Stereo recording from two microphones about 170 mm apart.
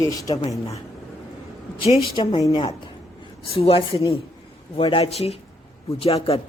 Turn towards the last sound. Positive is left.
turn(degrees=35)  # may be behind; listen again after turning